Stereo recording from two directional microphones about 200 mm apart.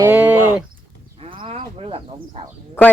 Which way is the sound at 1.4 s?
30° right (ahead or behind).